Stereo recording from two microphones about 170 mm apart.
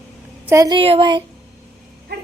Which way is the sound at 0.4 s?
20° right (ahead or behind).